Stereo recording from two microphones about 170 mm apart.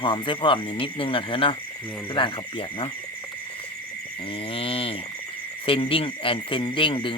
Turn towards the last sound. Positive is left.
turn(degrees=30)  # may be behind; listen again after turning